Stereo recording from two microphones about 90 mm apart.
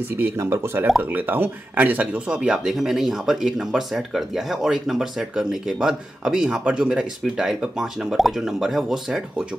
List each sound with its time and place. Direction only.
0.2 s speech: 30° right (ahead or behind); by 9.2 s centre (ahead or behind)